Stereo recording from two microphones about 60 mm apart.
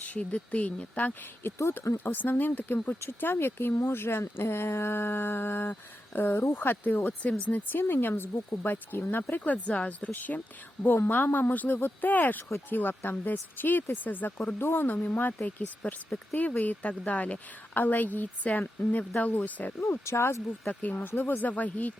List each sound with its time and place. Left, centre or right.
0.0 s a woman's voice: left
9.4 s a woman's voice: left
14.6 s a woman's voice: left
20.1 s speech: left
20.7 s a woman's voice: left